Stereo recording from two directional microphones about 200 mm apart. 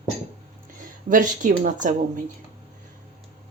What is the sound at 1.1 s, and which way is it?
Speech, 40° right (ahead or behind).